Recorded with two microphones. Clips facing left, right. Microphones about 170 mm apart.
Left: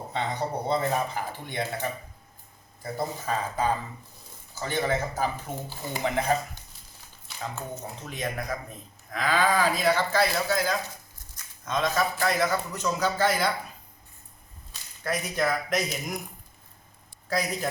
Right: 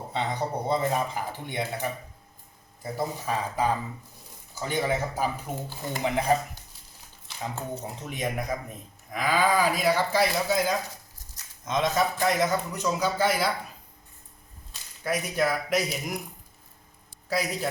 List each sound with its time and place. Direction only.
0.2 s a man's voice: 10° right (ahead or behind)
5.6 s speech: 10° left (ahead or behind)
6.0 s a man's voice: 15° right (ahead or behind)
8.0 s a man's voice: 15° right (ahead or behind)
15.0 s a man's voice: 5° right (ahead or behind)
17.2 s a man's voice: 5° right (ahead or behind)